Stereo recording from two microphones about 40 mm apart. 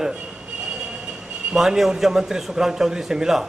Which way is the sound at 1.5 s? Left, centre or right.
Centre.